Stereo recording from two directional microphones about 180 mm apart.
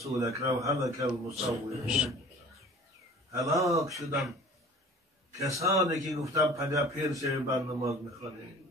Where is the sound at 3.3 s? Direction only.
15° right (ahead or behind).